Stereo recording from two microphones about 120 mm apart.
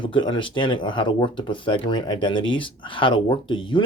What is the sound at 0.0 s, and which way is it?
Speech, 40° left (ahead or behind).